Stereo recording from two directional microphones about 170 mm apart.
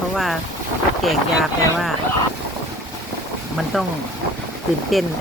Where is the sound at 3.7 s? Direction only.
Centre (ahead or behind).